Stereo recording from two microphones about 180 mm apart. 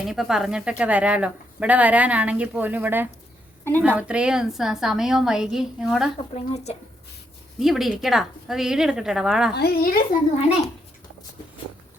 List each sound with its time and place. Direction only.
0.0 s a woman's voice: centre (ahead or behind)
3.6 s a woman's voice: 10° left (ahead or behind)
3.8 s a woman's voice: 5° right (ahead or behind)
6.3 s speech: 35° left (ahead or behind)
7.6 s a woman's voice: centre (ahead or behind)
9.6 s a child's voice: 60° left (ahead or behind)